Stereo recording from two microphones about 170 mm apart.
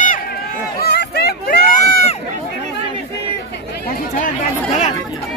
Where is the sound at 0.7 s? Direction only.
70° left (ahead or behind).